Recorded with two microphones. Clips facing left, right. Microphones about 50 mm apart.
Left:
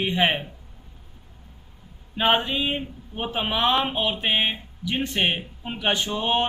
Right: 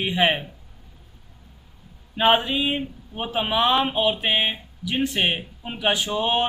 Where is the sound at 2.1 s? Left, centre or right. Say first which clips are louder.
Right 2 dB; centre.